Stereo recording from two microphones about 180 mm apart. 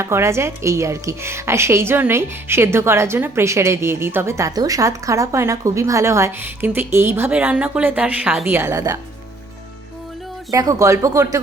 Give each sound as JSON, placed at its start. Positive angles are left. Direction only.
{"t": 0.0, "sound": "a woman's voice", "side_deg": -15}
{"t": 10.5, "sound": "speech", "side_deg": -20}